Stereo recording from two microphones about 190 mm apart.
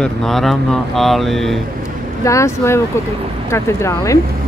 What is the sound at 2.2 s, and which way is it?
Speech, 15° left (ahead or behind).